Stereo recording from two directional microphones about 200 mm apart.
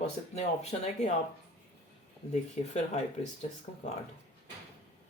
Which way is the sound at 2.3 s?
35° left (ahead or behind).